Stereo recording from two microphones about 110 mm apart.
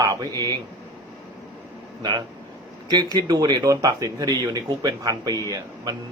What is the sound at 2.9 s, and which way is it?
Speech, 40° right (ahead or behind).